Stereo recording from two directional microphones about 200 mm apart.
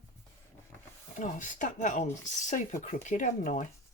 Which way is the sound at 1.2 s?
40° left (ahead or behind).